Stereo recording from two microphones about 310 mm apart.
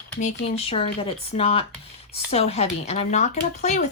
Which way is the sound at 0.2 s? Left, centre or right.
Left.